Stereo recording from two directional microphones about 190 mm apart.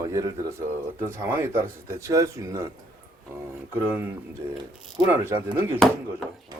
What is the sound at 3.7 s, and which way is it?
Speech, 10° right (ahead or behind).